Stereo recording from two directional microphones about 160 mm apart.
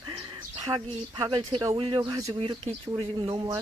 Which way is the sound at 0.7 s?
30° right (ahead or behind).